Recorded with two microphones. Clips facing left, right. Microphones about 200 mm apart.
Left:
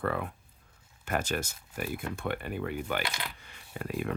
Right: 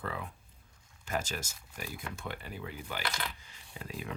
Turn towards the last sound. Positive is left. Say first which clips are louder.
# left 8 dB
turn(degrees=60)  # may be behind; listen again after turning